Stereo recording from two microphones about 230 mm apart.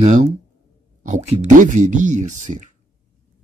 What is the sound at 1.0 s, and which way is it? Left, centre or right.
Speech, right.